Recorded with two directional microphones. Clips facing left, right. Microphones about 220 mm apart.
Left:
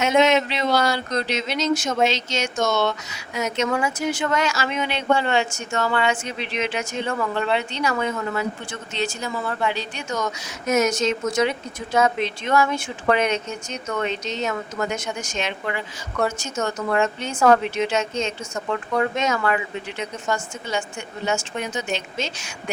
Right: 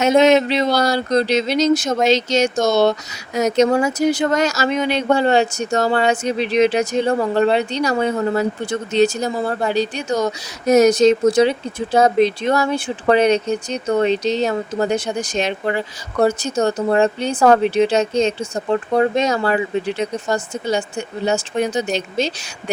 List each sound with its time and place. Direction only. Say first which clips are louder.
0.0 s speech: right 5 dB; 35° right (ahead or behind)